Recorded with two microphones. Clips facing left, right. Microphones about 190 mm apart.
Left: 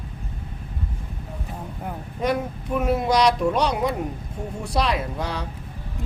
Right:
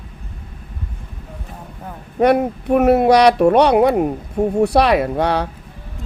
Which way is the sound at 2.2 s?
65° right (ahead or behind).